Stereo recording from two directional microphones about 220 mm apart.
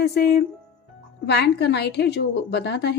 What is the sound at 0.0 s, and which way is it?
A woman's voice, 50° left (ahead or behind).